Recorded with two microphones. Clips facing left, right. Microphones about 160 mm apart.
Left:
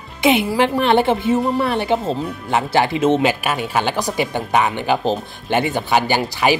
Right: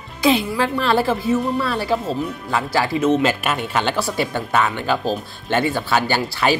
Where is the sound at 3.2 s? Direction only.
10° left (ahead or behind).